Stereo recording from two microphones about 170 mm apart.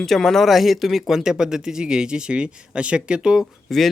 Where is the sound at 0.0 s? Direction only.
Centre (ahead or behind).